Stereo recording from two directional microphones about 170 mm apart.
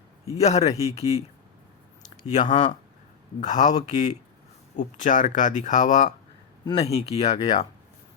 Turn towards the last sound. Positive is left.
turn(degrees=40)  # may be behind; listen again after turning